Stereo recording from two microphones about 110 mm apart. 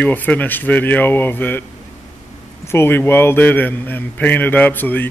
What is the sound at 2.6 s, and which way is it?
A man's voice, 20° left (ahead or behind).